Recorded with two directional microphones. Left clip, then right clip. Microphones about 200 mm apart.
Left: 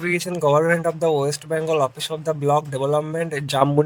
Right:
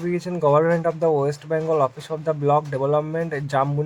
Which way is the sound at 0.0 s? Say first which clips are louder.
Left 3 dB; 55° left (ahead or behind).